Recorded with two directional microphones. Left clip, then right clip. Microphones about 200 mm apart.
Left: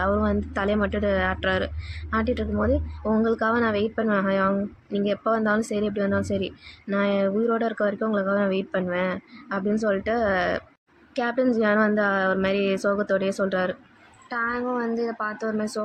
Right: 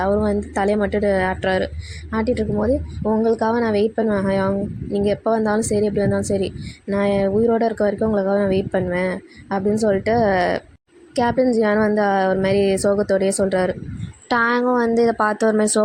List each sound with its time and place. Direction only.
0.0 s a woman's voice: 30° right (ahead or behind)
14.3 s speech: 40° right (ahead or behind)